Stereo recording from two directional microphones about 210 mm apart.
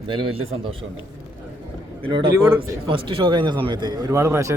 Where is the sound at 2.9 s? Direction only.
25° right (ahead or behind).